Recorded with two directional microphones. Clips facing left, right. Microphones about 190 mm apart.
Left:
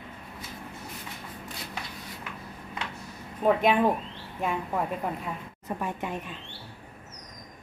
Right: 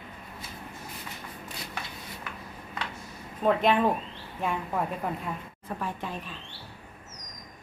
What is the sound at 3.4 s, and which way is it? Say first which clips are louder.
A woman's voice: left 1 dB; 10° left (ahead or behind).